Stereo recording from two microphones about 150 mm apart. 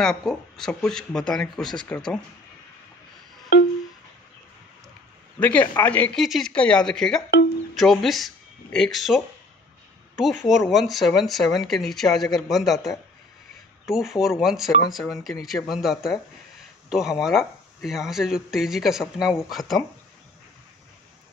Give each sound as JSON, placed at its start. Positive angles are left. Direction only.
{"t": 0.0, "sound": "speech", "side_deg": 0}
{"t": 5.4, "sound": "speech", "side_deg": 10}